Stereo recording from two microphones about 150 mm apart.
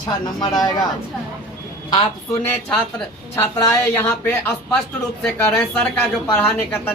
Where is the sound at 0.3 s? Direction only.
30° left (ahead or behind).